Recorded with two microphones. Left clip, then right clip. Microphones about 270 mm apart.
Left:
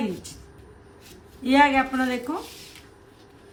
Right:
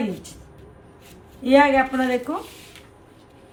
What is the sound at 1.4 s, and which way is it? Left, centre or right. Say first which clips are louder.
Speech: right 3 dB; centre.